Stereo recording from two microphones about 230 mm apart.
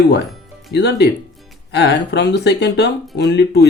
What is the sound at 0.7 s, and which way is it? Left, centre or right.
Speech, left.